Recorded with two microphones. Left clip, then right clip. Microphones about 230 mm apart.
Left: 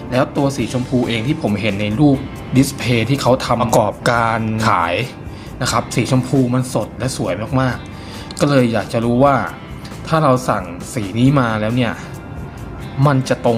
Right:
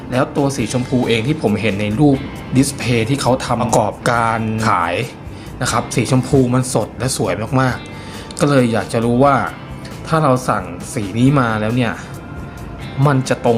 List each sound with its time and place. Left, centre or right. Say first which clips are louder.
0.1 s speech: even; centre
13.0 s speech: even; centre